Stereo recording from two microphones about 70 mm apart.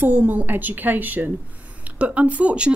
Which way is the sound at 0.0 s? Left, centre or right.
Right.